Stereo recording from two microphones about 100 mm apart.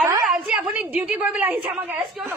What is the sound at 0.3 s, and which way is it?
A woman's voice, 10° right (ahead or behind).